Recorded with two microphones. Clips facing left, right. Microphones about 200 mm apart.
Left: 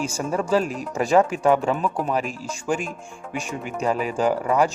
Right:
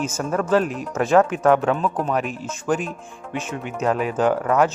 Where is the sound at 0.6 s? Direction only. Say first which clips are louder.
Right 2 dB; centre (ahead or behind).